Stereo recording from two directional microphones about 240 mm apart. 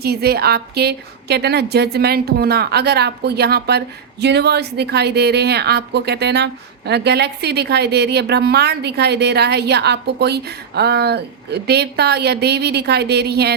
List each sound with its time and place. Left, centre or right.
0.0 s a woman's voice: right